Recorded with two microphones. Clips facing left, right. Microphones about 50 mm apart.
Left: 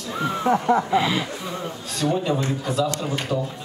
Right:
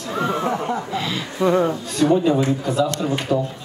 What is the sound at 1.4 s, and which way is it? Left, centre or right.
Speech, right.